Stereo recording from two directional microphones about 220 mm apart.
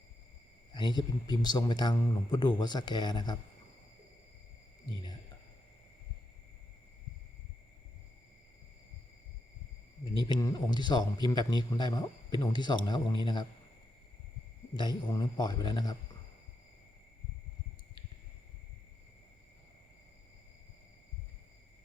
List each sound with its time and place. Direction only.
0.7 s a man's voice: 20° left (ahead or behind)
10.0 s a man's voice: 20° left (ahead or behind)
14.8 s a man's voice: 20° left (ahead or behind)